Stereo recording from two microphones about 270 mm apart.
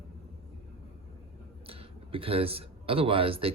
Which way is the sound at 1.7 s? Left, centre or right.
Right.